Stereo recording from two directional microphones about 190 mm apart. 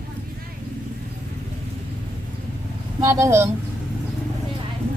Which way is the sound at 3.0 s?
15° right (ahead or behind).